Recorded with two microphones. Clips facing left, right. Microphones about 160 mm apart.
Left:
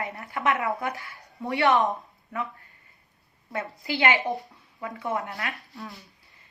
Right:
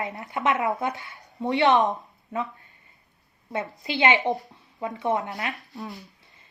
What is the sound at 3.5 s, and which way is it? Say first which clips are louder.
A woman's voice: right 1 dB; 20° right (ahead or behind).